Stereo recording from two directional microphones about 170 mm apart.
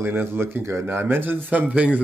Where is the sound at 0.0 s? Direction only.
15° right (ahead or behind).